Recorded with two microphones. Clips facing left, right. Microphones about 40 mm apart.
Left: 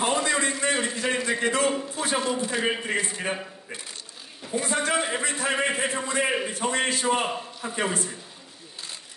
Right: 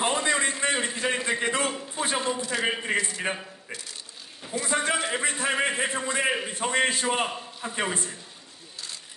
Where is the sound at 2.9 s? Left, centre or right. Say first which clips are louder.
Even; left.